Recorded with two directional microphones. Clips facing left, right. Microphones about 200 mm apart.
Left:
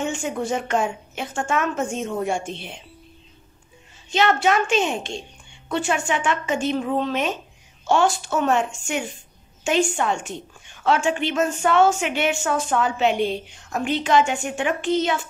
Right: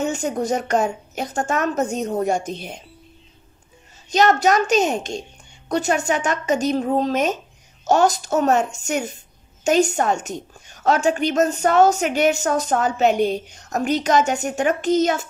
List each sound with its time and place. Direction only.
0.0 s a woman's voice: 40° right (ahead or behind)
4.1 s a woman's voice: 40° right (ahead or behind)